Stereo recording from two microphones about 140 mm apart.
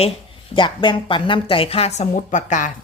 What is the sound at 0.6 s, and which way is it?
A woman's voice, 35° left (ahead or behind).